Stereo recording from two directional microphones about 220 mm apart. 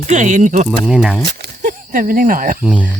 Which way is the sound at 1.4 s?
40° right (ahead or behind).